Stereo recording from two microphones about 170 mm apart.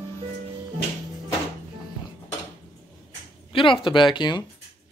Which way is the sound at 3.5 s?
30° left (ahead or behind).